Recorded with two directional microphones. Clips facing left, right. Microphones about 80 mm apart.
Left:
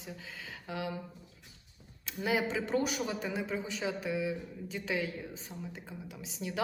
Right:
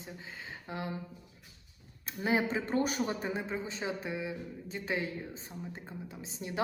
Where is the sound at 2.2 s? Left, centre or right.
Right.